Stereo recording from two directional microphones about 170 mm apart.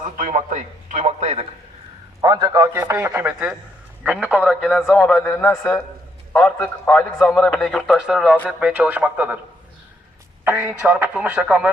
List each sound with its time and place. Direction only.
0.0 s a man's voice: 50° right (ahead or behind)
2.2 s a man's voice: 20° right (ahead or behind)
10.4 s speech: 10° right (ahead or behind)